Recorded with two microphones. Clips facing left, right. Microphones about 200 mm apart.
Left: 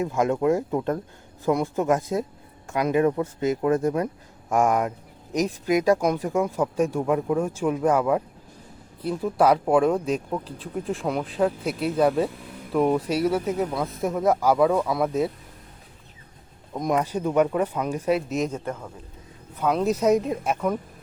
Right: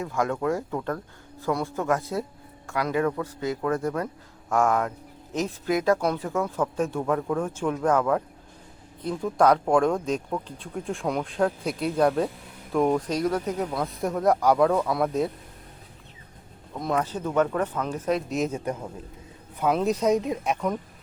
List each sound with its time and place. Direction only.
0.0 s a man's voice: 20° left (ahead or behind); by 15.3 s centre (ahead or behind)
16.7 s speech: 15° left (ahead or behind); by 18.6 s centre (ahead or behind)
18.6 s a man's voice: 15° right (ahead or behind)
19.5 s speech: centre (ahead or behind)